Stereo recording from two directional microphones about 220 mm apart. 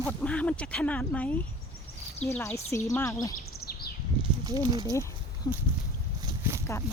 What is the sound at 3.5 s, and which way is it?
Bird, 45° left (ahead or behind).